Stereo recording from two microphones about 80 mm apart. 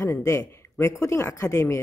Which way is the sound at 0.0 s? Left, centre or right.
Left.